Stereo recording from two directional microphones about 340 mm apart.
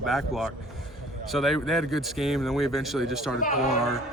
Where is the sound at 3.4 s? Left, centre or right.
Left.